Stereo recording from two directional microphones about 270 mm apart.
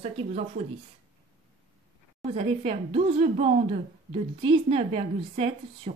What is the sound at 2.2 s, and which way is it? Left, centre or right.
Speech, right.